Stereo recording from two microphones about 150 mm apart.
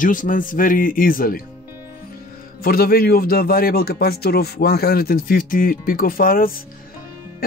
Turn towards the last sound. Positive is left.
turn(degrees=75)  # may be behind; listen again after turning